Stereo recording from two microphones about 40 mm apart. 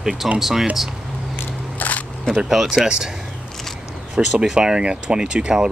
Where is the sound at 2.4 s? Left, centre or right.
Centre.